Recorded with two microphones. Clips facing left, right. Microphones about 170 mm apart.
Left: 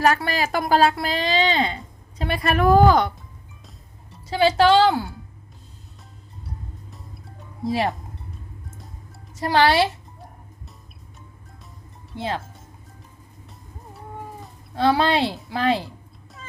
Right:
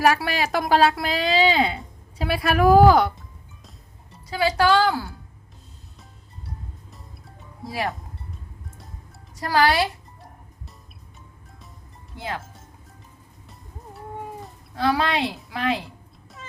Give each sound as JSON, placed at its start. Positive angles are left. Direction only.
{"t": 0.0, "sound": "speech", "side_deg": -5}
{"t": 4.3, "sound": "speech", "side_deg": 25}
{"t": 6.9, "sound": "music", "side_deg": 0}
{"t": 7.6, "sound": "speech", "side_deg": 20}
{"t": 9.3, "sound": "speech", "side_deg": 25}
{"t": 12.1, "sound": "speech", "side_deg": 30}
{"t": 14.8, "sound": "speech", "side_deg": 30}